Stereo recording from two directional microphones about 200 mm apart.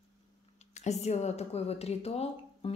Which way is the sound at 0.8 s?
35° left (ahead or behind).